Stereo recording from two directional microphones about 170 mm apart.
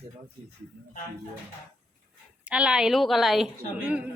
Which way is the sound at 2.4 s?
5° right (ahead or behind).